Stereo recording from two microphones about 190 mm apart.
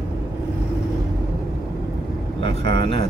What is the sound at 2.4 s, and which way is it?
Speech, 30° left (ahead or behind).